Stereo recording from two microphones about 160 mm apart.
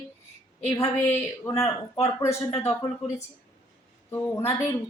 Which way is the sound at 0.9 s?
15° left (ahead or behind).